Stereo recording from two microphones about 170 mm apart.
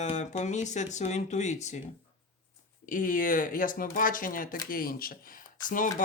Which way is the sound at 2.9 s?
50° left (ahead or behind).